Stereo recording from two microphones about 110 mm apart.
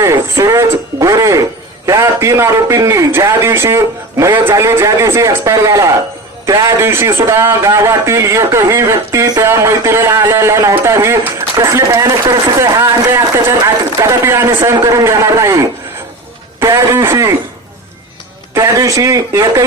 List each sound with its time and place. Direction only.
0.0 s radio: 30° right (ahead or behind)
1.9 s a man's voice: 30° right (ahead or behind)
9.5 s a man's voice: 25° right (ahead or behind)
18.5 s a man's voice: 30° right (ahead or behind)